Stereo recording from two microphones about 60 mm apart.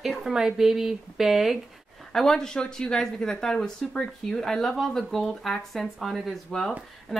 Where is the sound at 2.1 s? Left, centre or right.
Centre.